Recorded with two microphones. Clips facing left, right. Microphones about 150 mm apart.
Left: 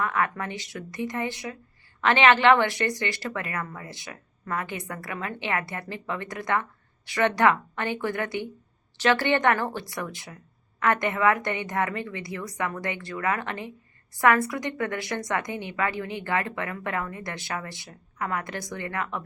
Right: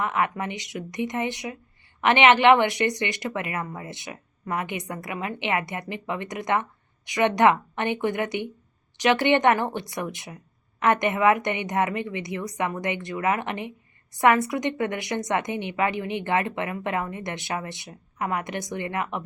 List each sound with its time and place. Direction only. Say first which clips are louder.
0.0 s speech: right 1 dB; 20° right (ahead or behind)